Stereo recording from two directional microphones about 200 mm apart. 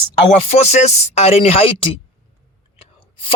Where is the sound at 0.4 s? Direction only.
35° left (ahead or behind).